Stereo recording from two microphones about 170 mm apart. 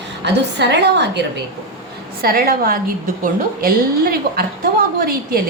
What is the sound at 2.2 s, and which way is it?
A woman's voice, 60° right (ahead or behind).